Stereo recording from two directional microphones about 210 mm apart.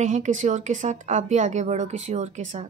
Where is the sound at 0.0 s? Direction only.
35° right (ahead or behind).